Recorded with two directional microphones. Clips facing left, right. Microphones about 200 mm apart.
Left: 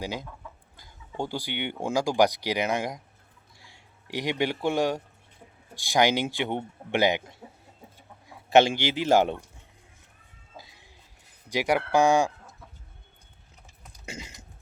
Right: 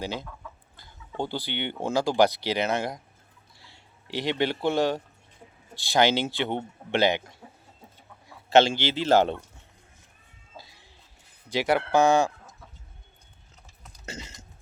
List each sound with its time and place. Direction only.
0.0 s a man's voice: 10° left (ahead or behind)
10.6 s music: 15° left (ahead or behind)
11.4 s speech: 15° left (ahead or behind)
14.0 s cough: 10° left (ahead or behind)